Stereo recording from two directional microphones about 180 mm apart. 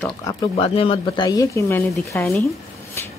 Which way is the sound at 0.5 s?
30° left (ahead or behind).